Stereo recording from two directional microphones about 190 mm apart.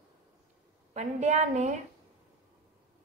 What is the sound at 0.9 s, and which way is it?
Speech, 40° right (ahead or behind).